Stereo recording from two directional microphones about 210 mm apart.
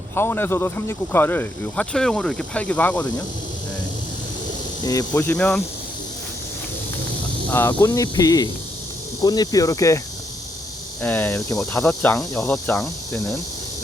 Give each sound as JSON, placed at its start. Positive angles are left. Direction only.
{"t": 0.1, "sound": "speech", "side_deg": 10}
{"t": 4.8, "sound": "speech", "side_deg": 15}
{"t": 7.5, "sound": "speech", "side_deg": 10}
{"t": 11.0, "sound": "speech", "side_deg": 10}